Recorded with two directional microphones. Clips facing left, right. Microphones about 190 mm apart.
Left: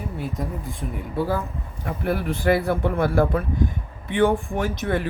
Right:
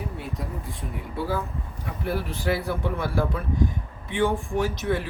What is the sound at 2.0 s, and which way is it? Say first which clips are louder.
Speech: left 5 dB; 55° left (ahead or behind).